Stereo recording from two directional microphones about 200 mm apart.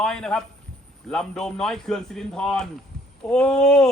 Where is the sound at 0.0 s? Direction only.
5° left (ahead or behind).